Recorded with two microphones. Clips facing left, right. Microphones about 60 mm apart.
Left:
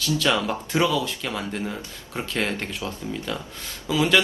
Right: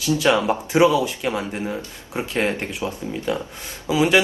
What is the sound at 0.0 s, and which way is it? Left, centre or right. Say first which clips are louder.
Speech: right 4 dB; right.